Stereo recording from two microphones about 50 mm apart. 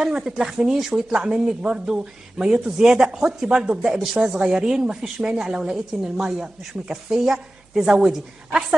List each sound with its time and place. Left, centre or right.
0.0 s speech: centre